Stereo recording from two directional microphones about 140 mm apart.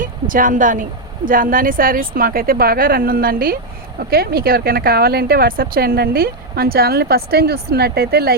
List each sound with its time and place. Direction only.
0.0 s speech: 75° right (ahead or behind); by 8.4 s 90° right